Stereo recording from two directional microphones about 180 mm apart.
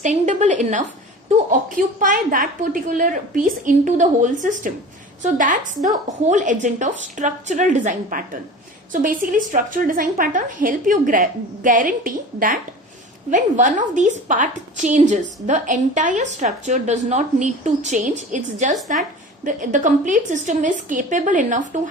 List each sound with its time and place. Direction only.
0.0 s a woman's voice: 40° right (ahead or behind)